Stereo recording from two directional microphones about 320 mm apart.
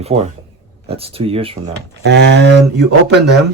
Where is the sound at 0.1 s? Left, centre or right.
Right.